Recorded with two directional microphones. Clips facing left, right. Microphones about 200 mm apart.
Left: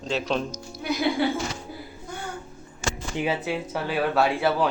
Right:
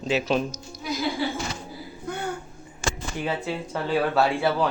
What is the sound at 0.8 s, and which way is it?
Speech, 65° left (ahead or behind).